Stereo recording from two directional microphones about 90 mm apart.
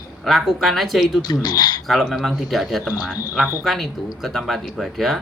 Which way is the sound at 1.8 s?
Centre (ahead or behind).